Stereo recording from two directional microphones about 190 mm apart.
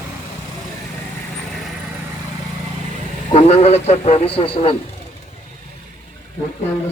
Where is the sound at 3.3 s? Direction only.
35° left (ahead or behind).